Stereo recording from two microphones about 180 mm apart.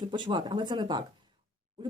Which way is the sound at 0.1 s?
25° right (ahead or behind).